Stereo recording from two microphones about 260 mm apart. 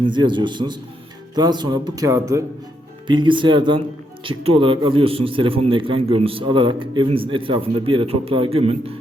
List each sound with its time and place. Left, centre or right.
0.0 s speech: centre